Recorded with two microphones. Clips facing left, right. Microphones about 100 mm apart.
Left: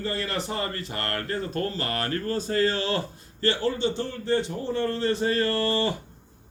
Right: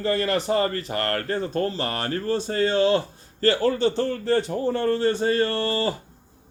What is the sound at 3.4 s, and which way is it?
Speech, 40° right (ahead or behind).